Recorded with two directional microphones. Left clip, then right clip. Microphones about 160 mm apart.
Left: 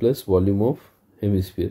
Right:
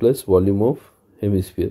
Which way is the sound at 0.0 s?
15° right (ahead or behind).